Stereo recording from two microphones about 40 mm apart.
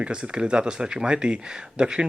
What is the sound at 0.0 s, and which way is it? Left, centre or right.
Speech, right.